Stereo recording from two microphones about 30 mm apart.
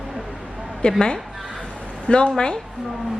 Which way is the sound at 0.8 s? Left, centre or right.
Left.